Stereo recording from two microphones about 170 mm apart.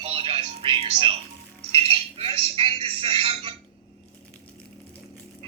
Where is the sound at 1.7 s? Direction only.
35° right (ahead or behind).